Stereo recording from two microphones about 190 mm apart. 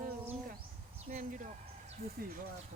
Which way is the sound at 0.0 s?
45° right (ahead or behind).